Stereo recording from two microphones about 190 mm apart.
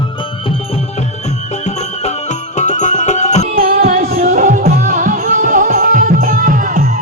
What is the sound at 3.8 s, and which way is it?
Music, 35° right (ahead or behind).